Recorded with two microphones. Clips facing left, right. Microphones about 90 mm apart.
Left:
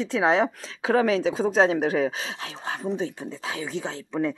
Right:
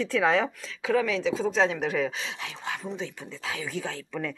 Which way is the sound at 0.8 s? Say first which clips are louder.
Left 4 dB; 45° left (ahead or behind).